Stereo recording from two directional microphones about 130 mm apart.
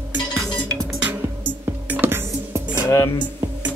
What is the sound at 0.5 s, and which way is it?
Music, 5° left (ahead or behind).